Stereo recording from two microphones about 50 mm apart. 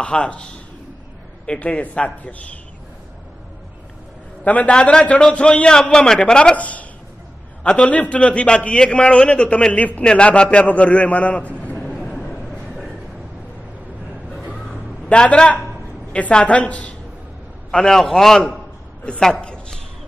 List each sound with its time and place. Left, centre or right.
0.0 s a man's voice: left
4.5 s a man's voice: left
6.5 s a man's voice: left
14.7 s a sound: left
16.1 s a man's voice: left
17.6 s a man's voice: centre
19.1 s a man's voice: centre
19.4 s a sound: centre